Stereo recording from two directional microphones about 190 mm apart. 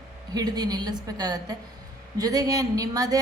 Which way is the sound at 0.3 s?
20° right (ahead or behind).